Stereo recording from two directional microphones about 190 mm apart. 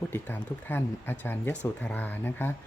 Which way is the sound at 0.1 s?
10° left (ahead or behind).